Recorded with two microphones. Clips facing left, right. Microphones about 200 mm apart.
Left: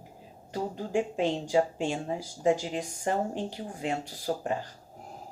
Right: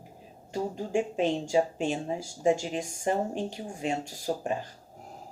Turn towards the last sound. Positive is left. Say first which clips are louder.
# even
turn(degrees=-15)  # may be behind; listen again after turning